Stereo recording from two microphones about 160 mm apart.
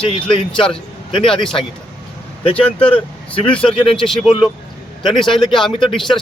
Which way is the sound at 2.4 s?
35° left (ahead or behind).